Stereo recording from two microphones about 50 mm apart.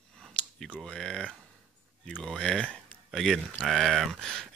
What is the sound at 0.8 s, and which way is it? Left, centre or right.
Speech, centre.